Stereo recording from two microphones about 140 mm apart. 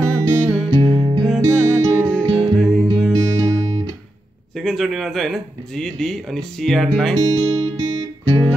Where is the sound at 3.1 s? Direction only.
30° right (ahead or behind).